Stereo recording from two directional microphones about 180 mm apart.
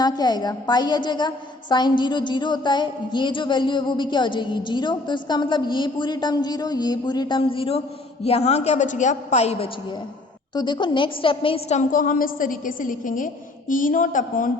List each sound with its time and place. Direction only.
0.0 s a woman's voice: 25° left (ahead or behind)
10.5 s a woman's voice: 25° left (ahead or behind); by 14.5 s 50° left (ahead or behind)